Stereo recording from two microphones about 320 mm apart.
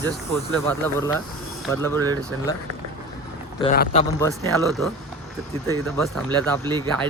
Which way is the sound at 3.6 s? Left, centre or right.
Left.